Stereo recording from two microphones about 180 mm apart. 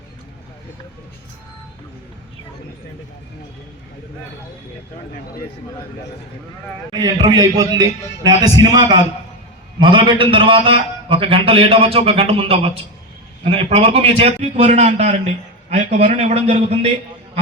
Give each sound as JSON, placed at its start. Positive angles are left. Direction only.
{"t": 6.9, "sound": "a man's voice", "side_deg": -25}